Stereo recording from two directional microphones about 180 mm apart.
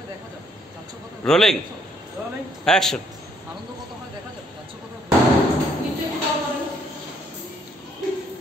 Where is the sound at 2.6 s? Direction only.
5° left (ahead or behind).